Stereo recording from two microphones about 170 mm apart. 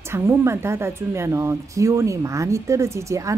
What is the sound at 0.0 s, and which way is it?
A woman's voice, 15° right (ahead or behind).